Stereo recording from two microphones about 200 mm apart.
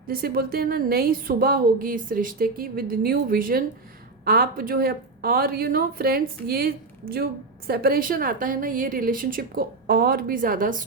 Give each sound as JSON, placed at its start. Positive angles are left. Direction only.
{"t": 0.1, "sound": "a woman's voice", "side_deg": -50}